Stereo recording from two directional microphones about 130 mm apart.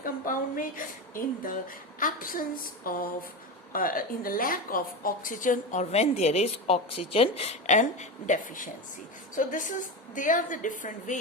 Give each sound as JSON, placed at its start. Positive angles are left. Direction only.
{"t": 0.0, "sound": "a woman's voice", "side_deg": 90}
{"t": 7.8, "sound": "a woman's voice", "side_deg": 75}